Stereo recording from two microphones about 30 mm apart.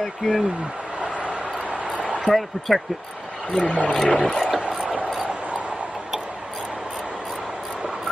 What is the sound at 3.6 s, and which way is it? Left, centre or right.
Speech, left.